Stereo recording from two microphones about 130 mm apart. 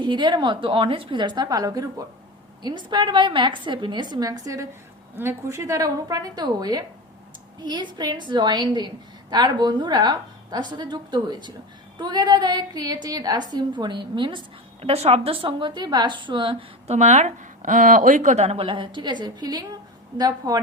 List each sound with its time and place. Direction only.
0.0 s a woman's voice: 35° right (ahead or behind)